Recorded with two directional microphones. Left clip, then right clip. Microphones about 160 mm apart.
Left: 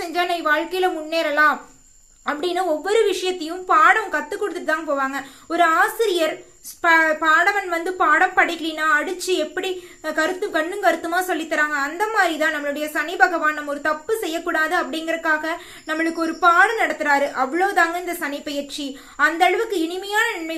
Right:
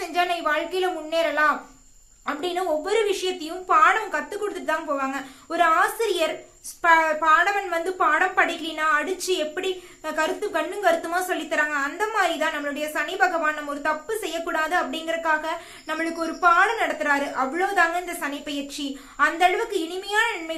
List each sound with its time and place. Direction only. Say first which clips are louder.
0.1 s a woman's voice: left 3 dB; 30° left (ahead or behind)